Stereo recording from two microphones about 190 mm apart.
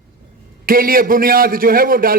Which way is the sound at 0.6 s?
50° right (ahead or behind).